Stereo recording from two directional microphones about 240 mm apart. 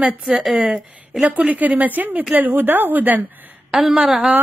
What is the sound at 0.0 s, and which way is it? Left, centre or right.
A woman's voice, centre.